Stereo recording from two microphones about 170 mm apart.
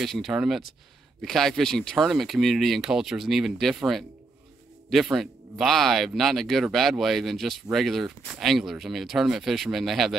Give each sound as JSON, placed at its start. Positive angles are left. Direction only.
{"t": 0.0, "sound": "speech", "side_deg": 0}